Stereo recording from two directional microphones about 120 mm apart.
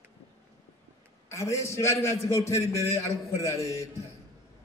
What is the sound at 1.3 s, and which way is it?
A man's voice, 25° left (ahead or behind).